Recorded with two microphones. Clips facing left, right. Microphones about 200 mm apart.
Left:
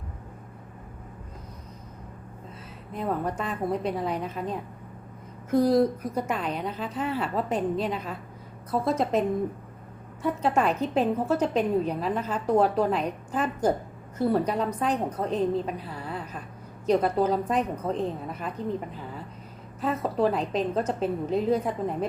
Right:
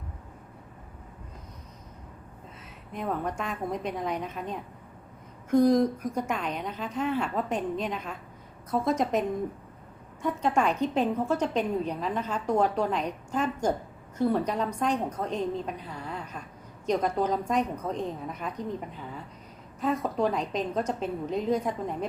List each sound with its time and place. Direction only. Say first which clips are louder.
3.0 s a woman's voice: left 2 dB; 5° left (ahead or behind)
5.7 s a woman's voice: left 2 dB; 5° left (ahead or behind)
10.2 s a woman's voice: left 2 dB; 5° left (ahead or behind)
15.2 s a woman's voice: left 4 dB; 35° left (ahead or behind)
15.6 s a woman's voice: left 2 dB; 5° left (ahead or behind)
19.8 s a woman's voice: left 2 dB; 5° left (ahead or behind)